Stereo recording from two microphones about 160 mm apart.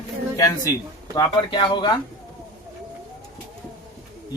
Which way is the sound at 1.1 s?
30° left (ahead or behind).